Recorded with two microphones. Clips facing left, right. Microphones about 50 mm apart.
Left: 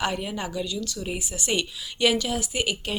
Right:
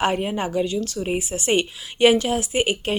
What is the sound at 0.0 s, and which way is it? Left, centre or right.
A woman's voice, right.